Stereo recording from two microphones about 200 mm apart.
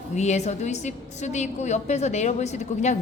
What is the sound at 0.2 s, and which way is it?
A woman's voice, 35° left (ahead or behind).